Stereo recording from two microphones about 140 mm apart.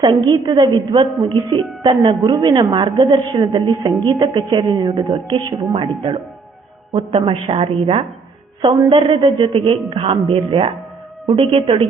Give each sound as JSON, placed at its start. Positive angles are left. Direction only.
{"t": 0.0, "sound": "a woman's voice", "side_deg": -30}